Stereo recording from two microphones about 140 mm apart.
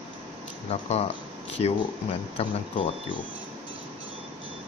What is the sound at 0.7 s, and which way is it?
Speech, 50° left (ahead or behind).